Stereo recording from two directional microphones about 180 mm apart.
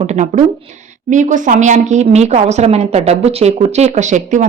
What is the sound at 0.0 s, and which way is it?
A woman's voice, 40° right (ahead or behind).